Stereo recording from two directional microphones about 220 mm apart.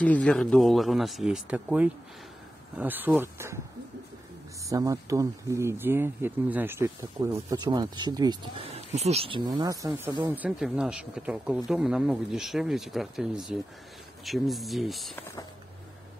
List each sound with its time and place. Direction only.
0.0 s speech: 5° left (ahead or behind); by 3.5 s 10° right (ahead or behind)
4.6 s speech: 15° right (ahead or behind)